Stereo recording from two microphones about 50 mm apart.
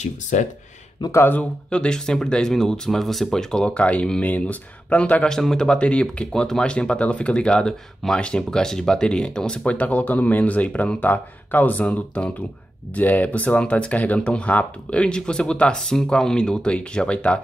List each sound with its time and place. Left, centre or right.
1.2 s speech: left
1.7 s speech: centre
5.4 s speech: centre
9.7 s speech: left